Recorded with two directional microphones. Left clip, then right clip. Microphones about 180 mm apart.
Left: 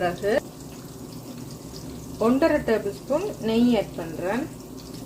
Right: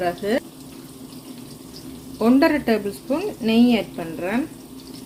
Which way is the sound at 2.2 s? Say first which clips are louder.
Right 3 dB; 40° right (ahead or behind).